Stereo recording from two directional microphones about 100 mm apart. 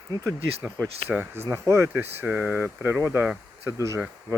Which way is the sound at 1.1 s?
20° right (ahead or behind).